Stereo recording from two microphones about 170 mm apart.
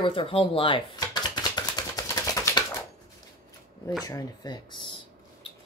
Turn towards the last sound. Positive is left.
turn(degrees=30)  # may be behind; listen again after turning